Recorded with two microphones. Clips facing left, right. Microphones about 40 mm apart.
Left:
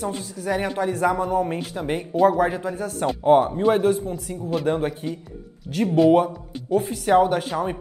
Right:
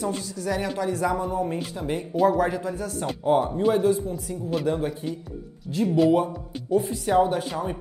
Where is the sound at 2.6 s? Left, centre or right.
Left.